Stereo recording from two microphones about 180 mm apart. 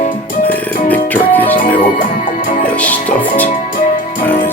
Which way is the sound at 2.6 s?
10° left (ahead or behind).